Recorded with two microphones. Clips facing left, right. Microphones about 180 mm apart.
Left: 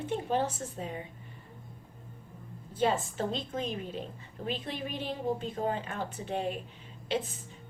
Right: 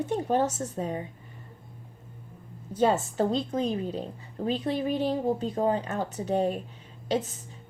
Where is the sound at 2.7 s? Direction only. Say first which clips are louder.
Right 5 dB; 40° right (ahead or behind).